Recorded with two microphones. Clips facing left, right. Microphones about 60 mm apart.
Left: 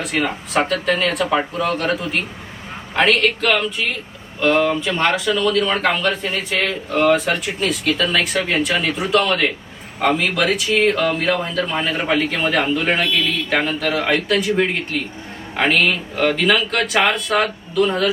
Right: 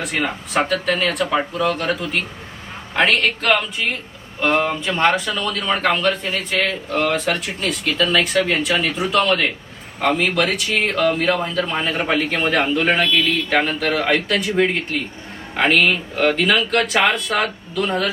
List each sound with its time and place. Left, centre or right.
0.0 s a man's voice: centre
2.9 s speech: centre